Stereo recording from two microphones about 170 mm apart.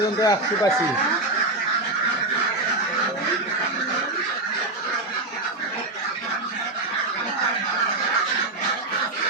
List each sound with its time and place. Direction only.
0.2 s speech: 20° left (ahead or behind)